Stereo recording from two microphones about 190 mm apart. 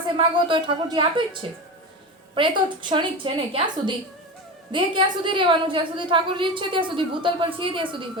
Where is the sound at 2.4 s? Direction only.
25° right (ahead or behind).